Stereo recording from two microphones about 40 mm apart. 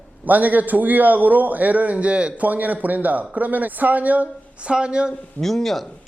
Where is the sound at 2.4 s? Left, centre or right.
Right.